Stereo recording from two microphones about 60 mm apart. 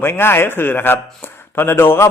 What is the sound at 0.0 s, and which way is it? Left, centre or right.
A man's voice, left.